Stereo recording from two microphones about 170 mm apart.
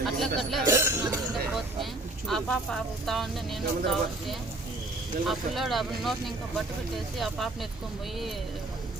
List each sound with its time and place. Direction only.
0.0 s speech: centre (ahead or behind)
0.7 s cough: 15° right (ahead or behind)
1.8 s speech: centre (ahead or behind)